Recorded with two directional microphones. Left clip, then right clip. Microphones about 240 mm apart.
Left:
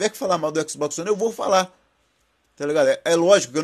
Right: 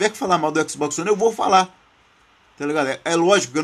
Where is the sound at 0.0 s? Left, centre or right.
Centre.